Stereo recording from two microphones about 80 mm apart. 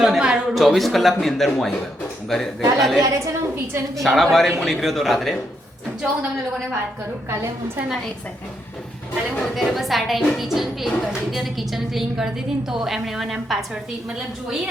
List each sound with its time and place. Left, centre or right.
0.0 s a sound: centre
0.5 s a woman's voice: centre
3.0 s a woman's voice: right
4.0 s a woman's voice: centre
9.4 s a woman's voice: centre